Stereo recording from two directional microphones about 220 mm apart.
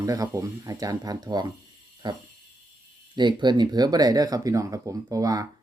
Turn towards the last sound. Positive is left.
turn(degrees=-15)  # may be behind; listen again after turning